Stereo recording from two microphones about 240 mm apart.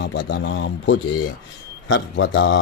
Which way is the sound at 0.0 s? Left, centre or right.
Left.